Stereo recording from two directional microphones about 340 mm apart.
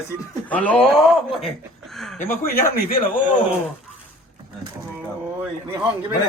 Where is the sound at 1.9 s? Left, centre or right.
Centre.